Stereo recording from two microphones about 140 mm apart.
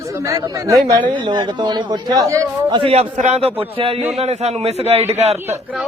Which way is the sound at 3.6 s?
40° right (ahead or behind).